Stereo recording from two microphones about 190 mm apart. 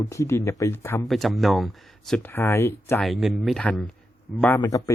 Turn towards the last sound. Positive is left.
turn(degrees=15)  # may be behind; listen again after turning